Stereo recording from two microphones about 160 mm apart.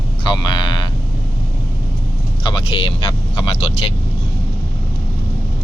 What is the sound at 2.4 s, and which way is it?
Vehicle, 30° left (ahead or behind).